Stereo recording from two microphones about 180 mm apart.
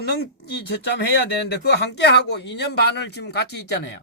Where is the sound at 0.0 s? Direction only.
65° left (ahead or behind).